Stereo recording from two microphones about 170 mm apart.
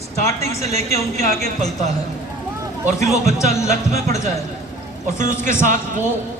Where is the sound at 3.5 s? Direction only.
40° right (ahead or behind).